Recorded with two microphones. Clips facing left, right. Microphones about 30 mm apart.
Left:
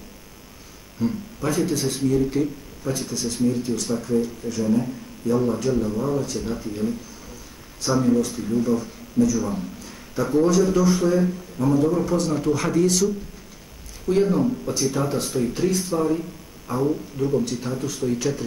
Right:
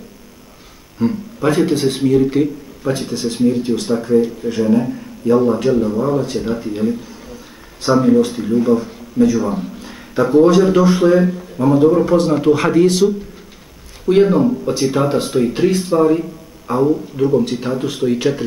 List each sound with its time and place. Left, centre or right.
0.9 s speech: right